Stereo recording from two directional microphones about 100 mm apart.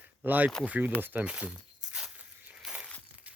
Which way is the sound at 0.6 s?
15° right (ahead or behind).